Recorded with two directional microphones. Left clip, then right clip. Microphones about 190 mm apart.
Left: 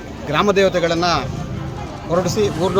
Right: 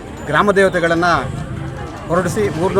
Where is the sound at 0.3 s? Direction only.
5° right (ahead or behind).